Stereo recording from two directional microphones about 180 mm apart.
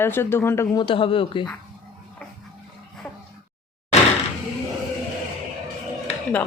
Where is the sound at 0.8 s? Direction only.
30° left (ahead or behind).